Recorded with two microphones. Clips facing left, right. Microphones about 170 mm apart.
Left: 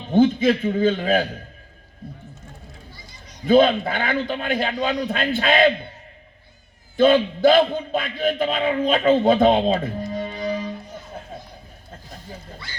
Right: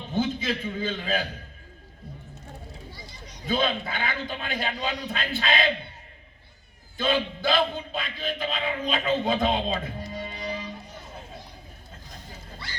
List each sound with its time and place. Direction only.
0.1 s a man's voice: 50° left (ahead or behind)
3.4 s a man's voice: 50° left (ahead or behind)
6.9 s a man's voice: 50° left (ahead or behind)